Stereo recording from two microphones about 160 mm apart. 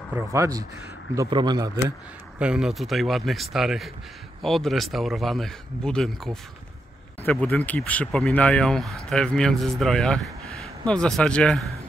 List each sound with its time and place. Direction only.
0.1 s a man's voice: 20° right (ahead or behind)
2.3 s speech: 5° right (ahead or behind)